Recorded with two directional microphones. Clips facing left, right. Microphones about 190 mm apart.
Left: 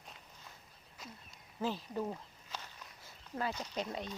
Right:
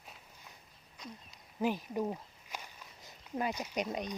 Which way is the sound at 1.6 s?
15° right (ahead or behind).